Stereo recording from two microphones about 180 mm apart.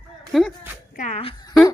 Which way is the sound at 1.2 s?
30° left (ahead or behind).